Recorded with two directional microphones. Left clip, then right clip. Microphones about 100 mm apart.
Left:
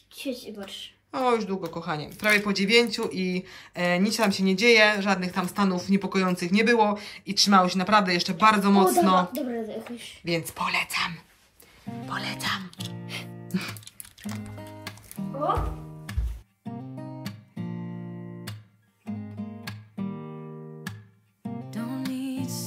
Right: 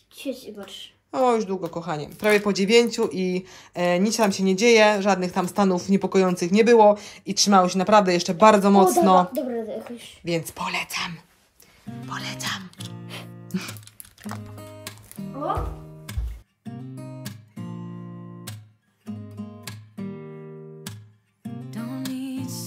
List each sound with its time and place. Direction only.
0.1 s a woman's voice: 50° right (ahead or behind)
1.1 s speech: 40° right (ahead or behind)
9.3 s speech: 90° right
9.8 s speech: 55° right (ahead or behind)
10.2 s speech: 35° right (ahead or behind)
12.1 s speech: 10° right (ahead or behind)
13.0 s music: 50° right (ahead or behind)
13.5 s music: 25° right (ahead or behind)
13.8 s music: 90° right
21.6 s music: centre (ahead or behind)